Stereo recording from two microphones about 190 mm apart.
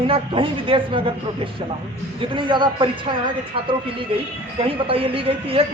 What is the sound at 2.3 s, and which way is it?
Speech, 25° right (ahead or behind).